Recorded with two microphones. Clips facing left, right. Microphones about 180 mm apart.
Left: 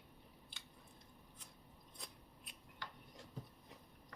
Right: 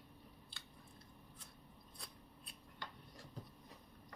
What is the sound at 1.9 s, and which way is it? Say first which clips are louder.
Scissors: left 1 dB; 20° left (ahead or behind).